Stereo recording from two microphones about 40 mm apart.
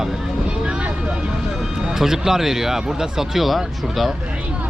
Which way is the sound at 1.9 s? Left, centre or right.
Centre.